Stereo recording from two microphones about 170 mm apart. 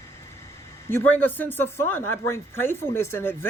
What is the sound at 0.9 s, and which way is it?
Speech, 10° left (ahead or behind).